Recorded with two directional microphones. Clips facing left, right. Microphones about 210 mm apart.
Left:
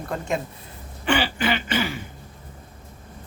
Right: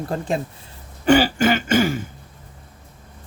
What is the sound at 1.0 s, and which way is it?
Throat clearing, 40° right (ahead or behind).